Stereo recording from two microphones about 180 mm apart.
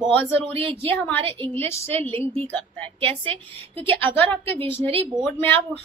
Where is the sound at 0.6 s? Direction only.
35° right (ahead or behind).